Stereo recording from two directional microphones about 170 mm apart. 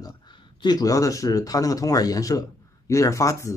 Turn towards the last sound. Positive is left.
turn(degrees=20)  # may be behind; listen again after turning